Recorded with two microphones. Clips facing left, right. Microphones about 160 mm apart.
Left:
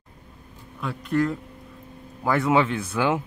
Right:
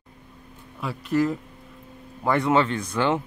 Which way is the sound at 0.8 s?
5° right (ahead or behind).